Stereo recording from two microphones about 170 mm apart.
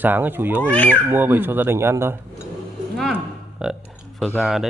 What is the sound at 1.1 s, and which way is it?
A man's voice, 10° right (ahead or behind).